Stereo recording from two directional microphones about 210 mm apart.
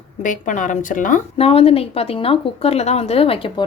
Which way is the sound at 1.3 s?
25° left (ahead or behind).